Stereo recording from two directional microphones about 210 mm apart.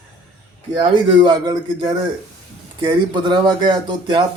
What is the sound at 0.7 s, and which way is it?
Speech, 20° right (ahead or behind).